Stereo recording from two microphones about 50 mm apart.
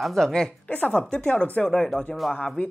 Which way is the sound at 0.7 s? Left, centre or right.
Left.